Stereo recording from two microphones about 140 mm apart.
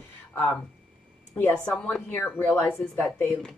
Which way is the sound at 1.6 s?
10° left (ahead or behind).